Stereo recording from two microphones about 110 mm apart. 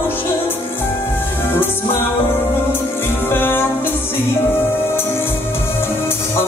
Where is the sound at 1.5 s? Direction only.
20° left (ahead or behind).